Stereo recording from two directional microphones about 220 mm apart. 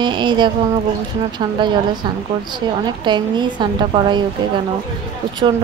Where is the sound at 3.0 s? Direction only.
20° right (ahead or behind).